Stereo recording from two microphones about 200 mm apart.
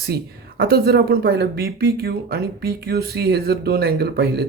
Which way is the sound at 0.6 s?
50° right (ahead or behind).